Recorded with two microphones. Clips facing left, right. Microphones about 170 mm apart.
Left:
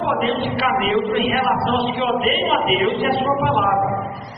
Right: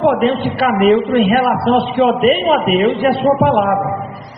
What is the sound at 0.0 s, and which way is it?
A man's voice, 50° right (ahead or behind).